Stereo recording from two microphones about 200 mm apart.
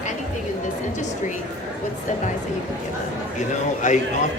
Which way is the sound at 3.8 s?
40° left (ahead or behind).